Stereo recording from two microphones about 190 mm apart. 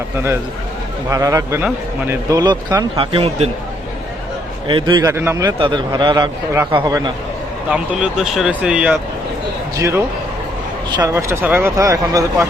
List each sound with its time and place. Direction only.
1.1 s a man's voice: 15° right (ahead or behind)
4.7 s a man's voice: 25° right (ahead or behind)
5.1 s a man's voice: 10° right (ahead or behind)
7.7 s speech: 5° right (ahead or behind)
9.7 s speech: 15° right (ahead or behind)